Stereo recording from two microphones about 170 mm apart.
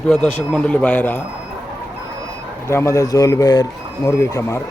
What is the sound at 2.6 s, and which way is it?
Speech, 15° left (ahead or behind).